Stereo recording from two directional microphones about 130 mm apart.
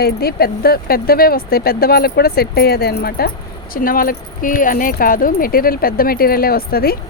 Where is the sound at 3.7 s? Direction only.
90° left.